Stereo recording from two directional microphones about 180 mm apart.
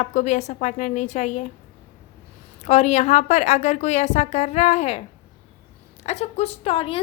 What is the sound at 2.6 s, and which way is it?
A woman's voice, 35° left (ahead or behind).